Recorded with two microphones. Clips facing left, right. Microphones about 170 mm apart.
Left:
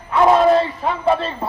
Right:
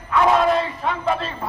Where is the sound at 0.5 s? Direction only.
30° left (ahead or behind).